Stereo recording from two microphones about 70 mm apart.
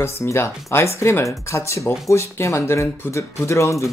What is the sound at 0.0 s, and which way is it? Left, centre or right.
Speech, left.